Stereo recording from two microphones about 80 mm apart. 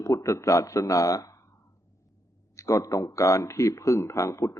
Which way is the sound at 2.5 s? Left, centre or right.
Left.